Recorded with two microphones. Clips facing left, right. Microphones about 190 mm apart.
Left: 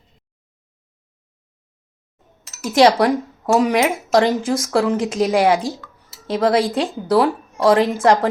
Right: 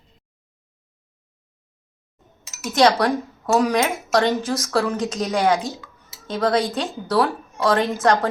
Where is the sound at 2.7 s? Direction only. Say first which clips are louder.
Left 4 dB; 25° left (ahead or behind).